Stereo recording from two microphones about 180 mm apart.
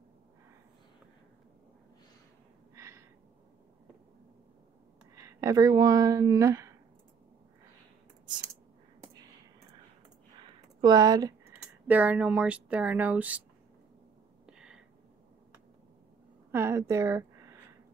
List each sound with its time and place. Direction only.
2.7 s gasp: 15° right (ahead or behind)
5.1 s speech: 20° right (ahead or behind)
10.4 s a sound: 20° right (ahead or behind)
11.5 s speech: 10° right (ahead or behind)
14.4 s a sound: 5° right (ahead or behind)
16.5 s a woman's voice: 15° right (ahead or behind)